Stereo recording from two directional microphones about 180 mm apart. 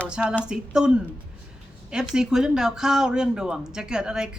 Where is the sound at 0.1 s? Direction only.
5° right (ahead or behind).